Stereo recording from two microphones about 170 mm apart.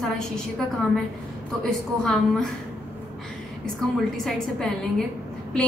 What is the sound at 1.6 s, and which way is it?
Speech, 5° left (ahead or behind).